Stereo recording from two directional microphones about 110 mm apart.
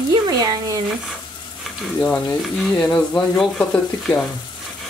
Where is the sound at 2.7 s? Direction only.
15° left (ahead or behind).